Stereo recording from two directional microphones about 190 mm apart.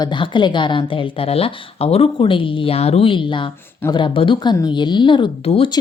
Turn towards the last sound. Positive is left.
turn(degrees=30)  # may be behind; listen again after turning